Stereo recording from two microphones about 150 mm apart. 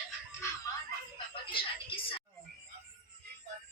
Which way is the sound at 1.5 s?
35° left (ahead or behind).